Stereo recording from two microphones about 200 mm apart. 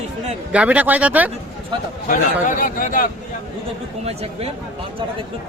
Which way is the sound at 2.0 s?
40° left (ahead or behind).